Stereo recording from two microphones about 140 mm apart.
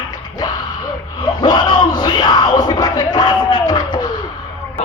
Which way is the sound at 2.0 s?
30° left (ahead or behind).